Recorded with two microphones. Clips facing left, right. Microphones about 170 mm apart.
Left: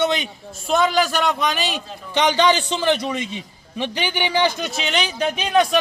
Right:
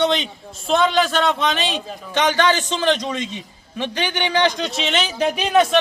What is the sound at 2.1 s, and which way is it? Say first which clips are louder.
A man's voice: left 1 dB; 15° left (ahead or behind).